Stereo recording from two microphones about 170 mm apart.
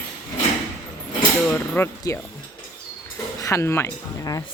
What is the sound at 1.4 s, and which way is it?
Speech, 10° left (ahead or behind).